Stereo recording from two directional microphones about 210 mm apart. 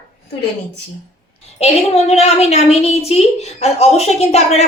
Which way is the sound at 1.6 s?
30° left (ahead or behind).